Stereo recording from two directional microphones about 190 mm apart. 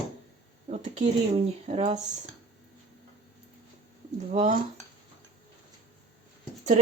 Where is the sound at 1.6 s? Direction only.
35° right (ahead or behind).